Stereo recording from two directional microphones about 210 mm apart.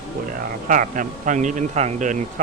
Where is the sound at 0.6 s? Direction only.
40° right (ahead or behind).